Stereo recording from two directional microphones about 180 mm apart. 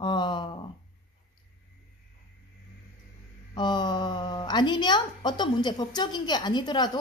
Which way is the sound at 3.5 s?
25° left (ahead or behind).